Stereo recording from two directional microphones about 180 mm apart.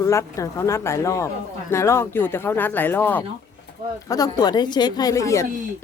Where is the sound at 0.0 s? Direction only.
15° left (ahead or behind).